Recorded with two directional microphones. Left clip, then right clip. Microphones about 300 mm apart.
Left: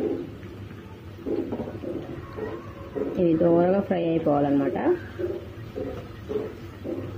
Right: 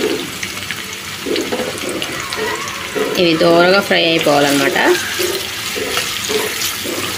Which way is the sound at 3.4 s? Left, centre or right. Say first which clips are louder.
Right 11 dB; centre.